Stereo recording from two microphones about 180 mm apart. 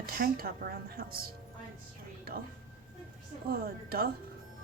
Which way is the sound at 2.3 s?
55° right (ahead or behind).